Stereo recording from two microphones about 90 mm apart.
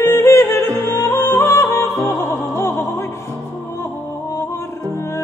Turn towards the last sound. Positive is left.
turn(degrees=30)  # may be behind; listen again after turning